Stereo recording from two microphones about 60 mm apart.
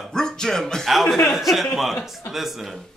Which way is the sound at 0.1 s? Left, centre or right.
Centre.